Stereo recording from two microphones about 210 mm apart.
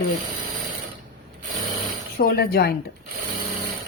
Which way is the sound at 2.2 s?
45° left (ahead or behind).